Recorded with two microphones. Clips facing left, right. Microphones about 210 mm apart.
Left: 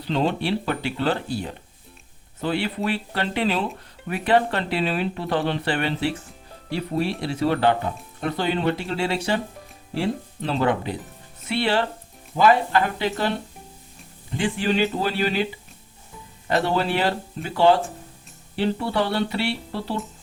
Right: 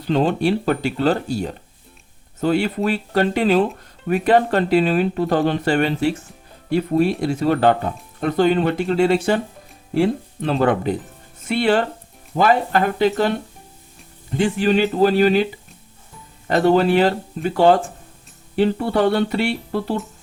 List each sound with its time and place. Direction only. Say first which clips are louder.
0.1 s speech: right 5 dB; 45° right (ahead or behind)
14.3 s speech: right 5 dB; 45° right (ahead or behind)
16.5 s speech: right 7 dB; 45° right (ahead or behind)